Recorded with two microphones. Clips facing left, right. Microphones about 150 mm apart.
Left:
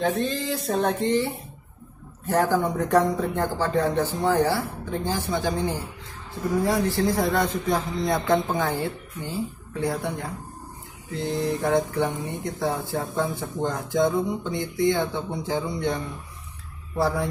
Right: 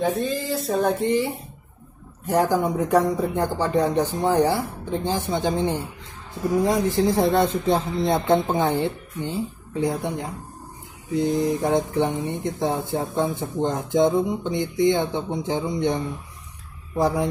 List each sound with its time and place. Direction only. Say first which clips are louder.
0.0 s speech: right 1 dB; 5° right (ahead or behind)